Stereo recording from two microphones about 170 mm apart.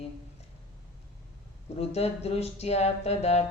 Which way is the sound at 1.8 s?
35° left (ahead or behind).